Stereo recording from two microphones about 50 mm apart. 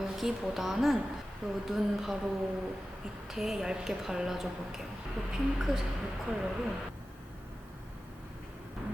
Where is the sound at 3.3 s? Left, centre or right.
Centre.